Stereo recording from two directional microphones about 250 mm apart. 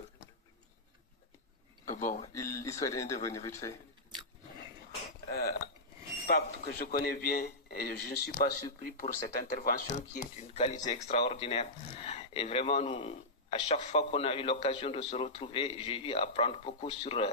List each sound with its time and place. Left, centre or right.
1.9 s speech: left
2.3 s speech: centre
6.2 s a man's voice: left